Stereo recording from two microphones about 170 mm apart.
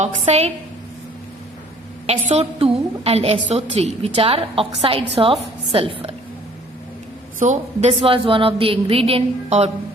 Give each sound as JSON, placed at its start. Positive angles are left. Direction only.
{"t": 0.0, "sound": "a woman's voice", "side_deg": -40}
{"t": 2.0, "sound": "a woman's voice", "side_deg": -40}
{"t": 7.3, "sound": "a woman's voice", "side_deg": -45}